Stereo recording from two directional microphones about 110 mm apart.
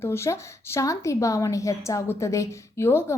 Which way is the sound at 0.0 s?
25° left (ahead or behind).